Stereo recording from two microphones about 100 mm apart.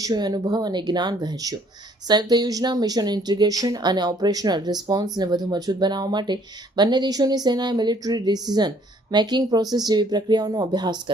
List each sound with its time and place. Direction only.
0.0 s speech: 45° right (ahead or behind)